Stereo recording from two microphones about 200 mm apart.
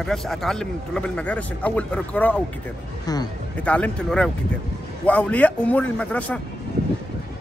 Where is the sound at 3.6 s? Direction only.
5° left (ahead or behind).